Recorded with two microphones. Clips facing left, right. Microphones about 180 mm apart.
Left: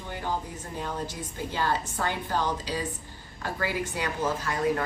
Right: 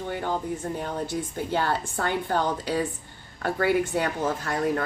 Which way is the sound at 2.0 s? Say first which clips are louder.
Right 4 dB; 55° right (ahead or behind).